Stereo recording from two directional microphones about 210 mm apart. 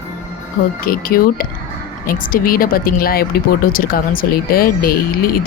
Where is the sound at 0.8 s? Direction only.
45° left (ahead or behind).